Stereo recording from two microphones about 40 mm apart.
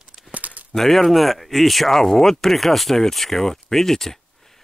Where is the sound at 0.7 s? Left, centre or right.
Centre.